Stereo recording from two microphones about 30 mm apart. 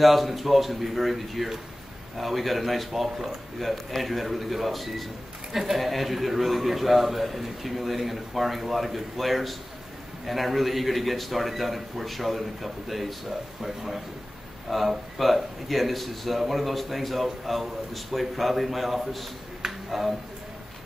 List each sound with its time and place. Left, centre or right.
0.0 s a man's voice: centre
3.6 s a man's voice: centre